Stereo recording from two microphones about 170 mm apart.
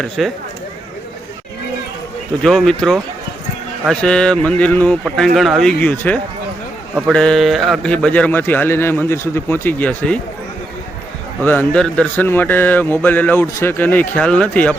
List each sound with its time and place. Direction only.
0.2 s speech: centre (ahead or behind)
2.4 s speech: 5° left (ahead or behind)
11.4 s speech: 10° left (ahead or behind)